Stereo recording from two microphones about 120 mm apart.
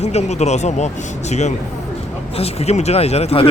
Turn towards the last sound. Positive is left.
turn(degrees=60)  # may be behind; listen again after turning